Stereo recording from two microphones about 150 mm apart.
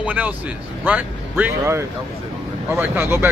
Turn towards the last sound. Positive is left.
turn(degrees=-15)  # may be behind; listen again after turning